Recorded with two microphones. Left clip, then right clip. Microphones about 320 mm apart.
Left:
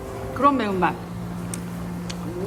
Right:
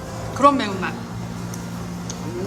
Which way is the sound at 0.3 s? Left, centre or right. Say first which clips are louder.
Right 3 dB; centre.